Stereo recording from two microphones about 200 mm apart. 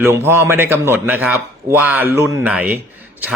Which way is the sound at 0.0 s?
10° right (ahead or behind).